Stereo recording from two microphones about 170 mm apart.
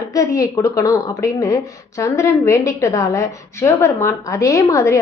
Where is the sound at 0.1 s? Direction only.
20° left (ahead or behind).